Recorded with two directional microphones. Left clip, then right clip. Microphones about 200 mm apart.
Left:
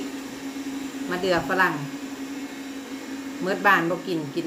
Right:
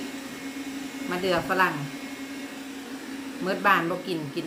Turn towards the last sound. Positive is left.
turn(degrees=0)  # may be behind; listen again after turning